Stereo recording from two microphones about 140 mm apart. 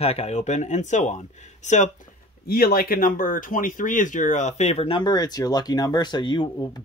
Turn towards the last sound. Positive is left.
turn(degrees=30)  # may be behind; listen again after turning